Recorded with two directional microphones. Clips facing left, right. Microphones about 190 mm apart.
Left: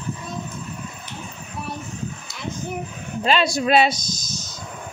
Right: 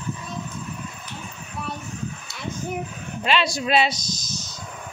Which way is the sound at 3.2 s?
40° left (ahead or behind).